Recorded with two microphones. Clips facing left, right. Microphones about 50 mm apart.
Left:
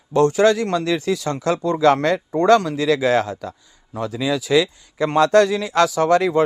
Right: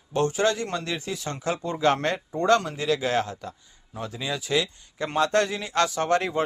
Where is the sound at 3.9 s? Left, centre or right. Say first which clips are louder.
Left 9 dB; left.